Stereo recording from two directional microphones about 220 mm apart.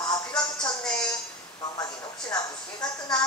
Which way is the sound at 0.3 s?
5° left (ahead or behind).